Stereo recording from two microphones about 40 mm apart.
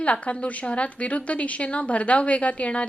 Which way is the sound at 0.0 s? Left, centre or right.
Left.